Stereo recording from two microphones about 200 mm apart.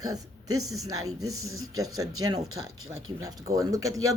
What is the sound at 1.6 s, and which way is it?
Speech, 15° right (ahead or behind).